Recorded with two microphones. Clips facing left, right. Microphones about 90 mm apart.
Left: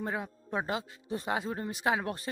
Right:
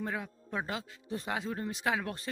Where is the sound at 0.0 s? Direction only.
20° left (ahead or behind).